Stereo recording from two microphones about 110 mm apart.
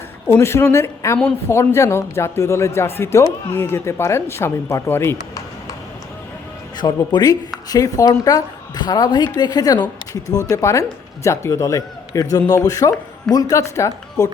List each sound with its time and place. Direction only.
0.3 s speech: 25° left (ahead or behind)
6.7 s speech: 40° left (ahead or behind)